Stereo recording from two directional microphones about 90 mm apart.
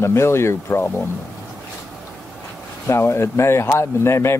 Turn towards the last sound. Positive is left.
turn(degrees=30)  # may be behind; listen again after turning